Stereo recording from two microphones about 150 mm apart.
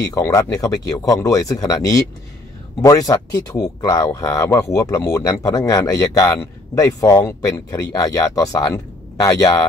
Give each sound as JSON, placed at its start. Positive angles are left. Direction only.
{"t": 0.1, "sound": "speech", "side_deg": 20}